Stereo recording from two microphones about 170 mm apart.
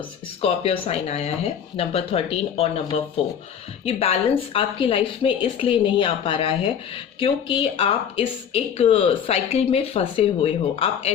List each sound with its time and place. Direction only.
0.4 s speech: 35° left (ahead or behind)